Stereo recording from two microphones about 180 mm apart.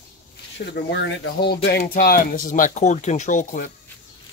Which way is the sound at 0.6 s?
55° left (ahead or behind).